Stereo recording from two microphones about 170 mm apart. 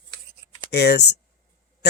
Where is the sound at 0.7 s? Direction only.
75° left (ahead or behind).